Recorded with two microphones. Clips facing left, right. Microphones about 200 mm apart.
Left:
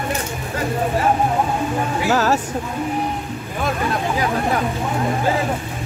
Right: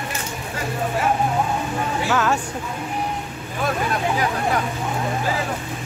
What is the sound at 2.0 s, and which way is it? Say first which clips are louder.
Speech: left 3 dB; 40° left (ahead or behind).